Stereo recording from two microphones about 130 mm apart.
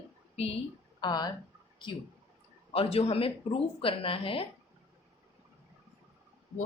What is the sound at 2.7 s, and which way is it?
Speech, 45° left (ahead or behind).